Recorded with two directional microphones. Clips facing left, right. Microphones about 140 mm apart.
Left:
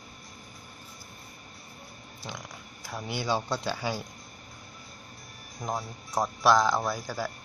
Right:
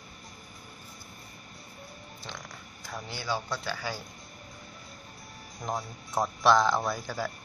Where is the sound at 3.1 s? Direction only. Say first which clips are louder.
Left 4 dB; 25° left (ahead or behind).